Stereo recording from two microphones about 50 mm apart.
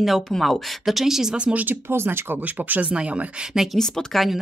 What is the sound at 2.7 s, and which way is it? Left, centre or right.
Speech, right.